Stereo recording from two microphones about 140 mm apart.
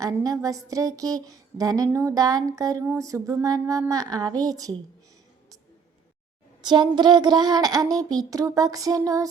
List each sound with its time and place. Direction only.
0.0 s speech: 25° right (ahead or behind)
6.6 s speech: 30° right (ahead or behind)